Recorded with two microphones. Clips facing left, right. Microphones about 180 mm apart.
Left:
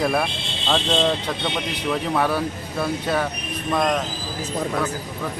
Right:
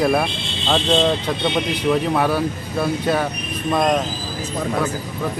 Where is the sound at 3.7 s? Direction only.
15° right (ahead or behind).